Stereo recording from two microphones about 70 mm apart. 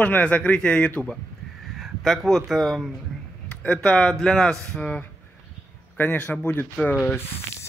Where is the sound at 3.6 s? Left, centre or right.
Centre.